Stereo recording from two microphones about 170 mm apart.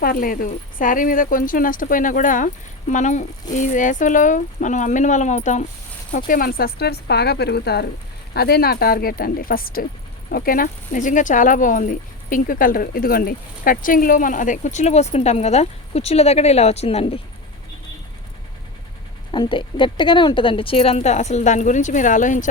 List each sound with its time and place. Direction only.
0.0 s speech: 60° left (ahead or behind); by 17.2 s 35° left (ahead or behind)
19.3 s a woman's voice: 30° left (ahead or behind); by 22.4 s 50° left (ahead or behind)